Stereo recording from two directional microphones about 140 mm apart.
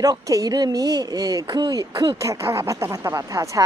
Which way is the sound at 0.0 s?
25° right (ahead or behind).